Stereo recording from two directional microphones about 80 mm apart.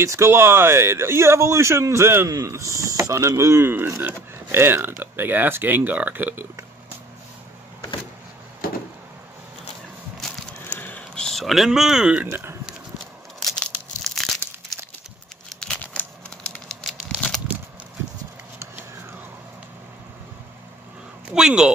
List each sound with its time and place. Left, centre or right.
0.0 s speech: right
2.2 s speech: right
10.7 s a sound: left
11.1 s speech: centre
13.5 s crumpling: centre
16.6 s crumpling: centre
21.3 s a sound: centre